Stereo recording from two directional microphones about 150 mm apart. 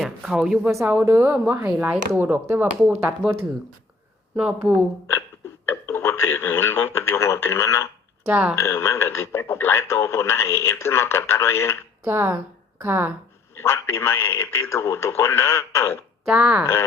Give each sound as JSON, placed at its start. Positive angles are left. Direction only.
{"t": 0.0, "sound": "a woman's voice", "side_deg": -5}
{"t": 0.7, "sound": "speech", "side_deg": -15}
{"t": 4.4, "sound": "speech", "side_deg": -5}
{"t": 5.6, "sound": "radio", "side_deg": 15}
{"t": 8.3, "sound": "speech", "side_deg": -10}
{"t": 8.5, "sound": "speech", "side_deg": 15}
{"t": 12.0, "sound": "speech", "side_deg": -15}
{"t": 13.6, "sound": "speech", "side_deg": 15}
{"t": 16.3, "sound": "speech", "side_deg": -5}